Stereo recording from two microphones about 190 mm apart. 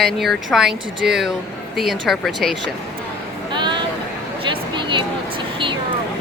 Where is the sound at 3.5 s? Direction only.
25° right (ahead or behind).